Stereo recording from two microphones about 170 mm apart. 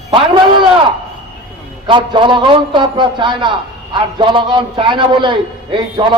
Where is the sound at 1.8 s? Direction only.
30° right (ahead or behind).